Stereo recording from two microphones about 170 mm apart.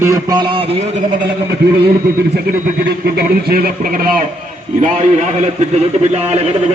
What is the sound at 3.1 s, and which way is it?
Speech, 65° right (ahead or behind).